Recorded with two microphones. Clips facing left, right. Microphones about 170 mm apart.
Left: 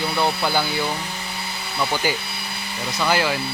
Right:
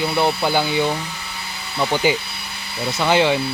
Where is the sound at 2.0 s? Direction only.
20° right (ahead or behind).